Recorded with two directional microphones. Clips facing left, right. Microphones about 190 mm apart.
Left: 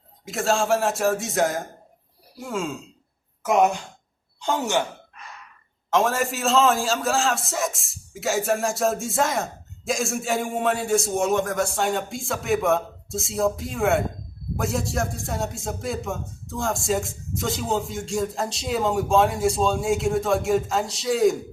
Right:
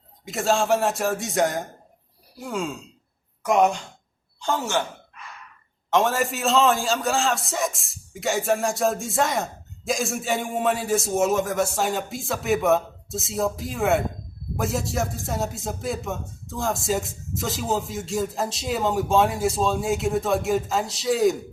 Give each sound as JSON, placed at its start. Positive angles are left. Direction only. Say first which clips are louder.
{"t": 0.3, "sound": "a man's voice", "louder": "even", "side_deg": 0}
{"t": 4.4, "sound": "speech", "louder": "left 1 dB", "side_deg": 15}
{"t": 5.9, "sound": "a man's voice", "louder": "even", "side_deg": 0}